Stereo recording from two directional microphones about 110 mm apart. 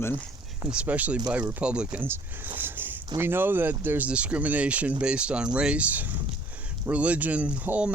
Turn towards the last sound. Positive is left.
turn(degrees=-10)  # may be behind; listen again after turning